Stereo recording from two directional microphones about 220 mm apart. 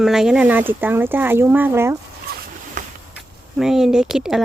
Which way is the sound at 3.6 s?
Centre (ahead or behind).